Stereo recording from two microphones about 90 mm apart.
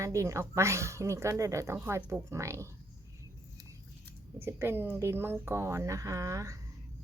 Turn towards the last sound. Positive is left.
turn(degrees=-35)  # may be behind; listen again after turning